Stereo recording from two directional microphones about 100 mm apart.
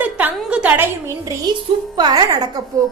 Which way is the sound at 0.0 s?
15° right (ahead or behind).